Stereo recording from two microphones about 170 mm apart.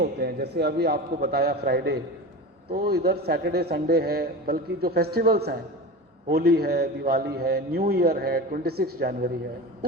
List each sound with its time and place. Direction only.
0.0 s a man's voice: 70° right (ahead or behind)